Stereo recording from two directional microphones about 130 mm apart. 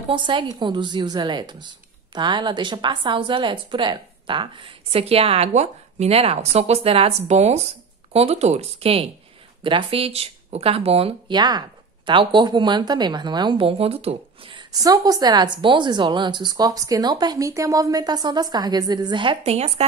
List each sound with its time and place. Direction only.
0.1 s a woman's voice: 40° right (ahead or behind)
11.3 s speech: 30° right (ahead or behind)
14.7 s a woman's voice: 30° right (ahead or behind)
19.4 s a woman's voice: 55° right (ahead or behind)